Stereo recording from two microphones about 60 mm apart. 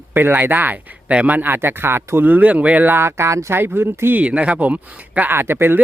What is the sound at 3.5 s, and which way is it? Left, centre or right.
Speech, right.